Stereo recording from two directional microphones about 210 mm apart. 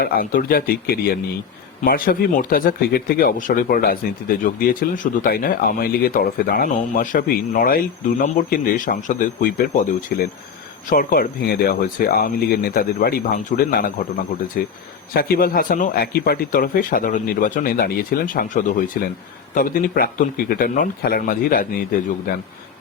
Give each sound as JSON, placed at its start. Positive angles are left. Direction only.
{"t": 0.0, "sound": "speech", "side_deg": 40}